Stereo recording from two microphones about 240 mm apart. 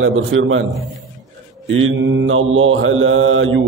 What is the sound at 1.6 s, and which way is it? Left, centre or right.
Mantra, right.